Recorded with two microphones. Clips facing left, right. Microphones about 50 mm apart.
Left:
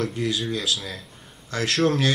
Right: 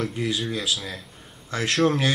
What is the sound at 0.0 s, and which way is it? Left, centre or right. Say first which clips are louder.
Speech: left 1 dB; centre.